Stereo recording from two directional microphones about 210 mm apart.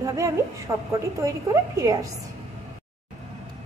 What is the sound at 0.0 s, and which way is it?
A woman's voice, 15° right (ahead or behind).